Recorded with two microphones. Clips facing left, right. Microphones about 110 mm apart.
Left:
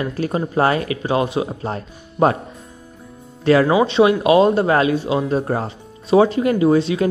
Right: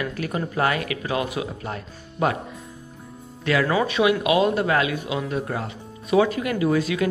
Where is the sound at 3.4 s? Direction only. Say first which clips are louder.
Left 7 dB; 35° left (ahead or behind).